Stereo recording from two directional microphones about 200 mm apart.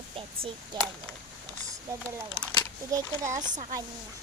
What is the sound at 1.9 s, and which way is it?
A child's voice, 15° right (ahead or behind).